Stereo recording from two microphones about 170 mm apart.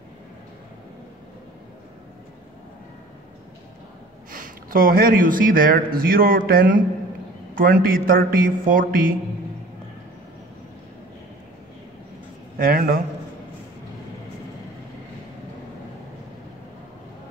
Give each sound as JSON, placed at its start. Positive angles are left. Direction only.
{"t": 4.3, "sound": "speech", "side_deg": -55}
{"t": 12.5, "sound": "speech", "side_deg": -60}